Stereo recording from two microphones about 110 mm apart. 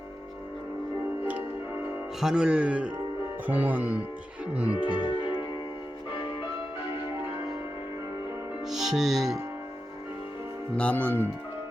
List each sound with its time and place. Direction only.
2.2 s speech: 5° right (ahead or behind)
4.9 s music: 50° left (ahead or behind)
8.6 s music: 5° right (ahead or behind)
10.8 s speech: 15° left (ahead or behind)